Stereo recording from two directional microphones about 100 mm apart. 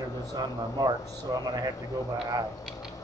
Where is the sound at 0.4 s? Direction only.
40° right (ahead or behind).